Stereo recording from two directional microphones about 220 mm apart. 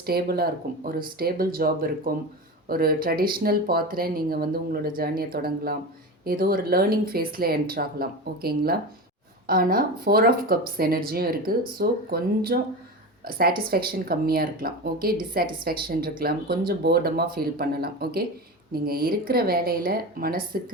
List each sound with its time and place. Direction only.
0.0 s speech: 45° right (ahead or behind)